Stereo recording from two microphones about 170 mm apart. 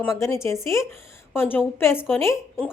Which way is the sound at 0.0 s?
15° left (ahead or behind).